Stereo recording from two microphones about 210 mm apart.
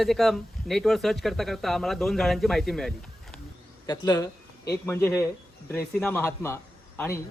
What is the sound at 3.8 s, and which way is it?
A man's voice, 15° left (ahead or behind).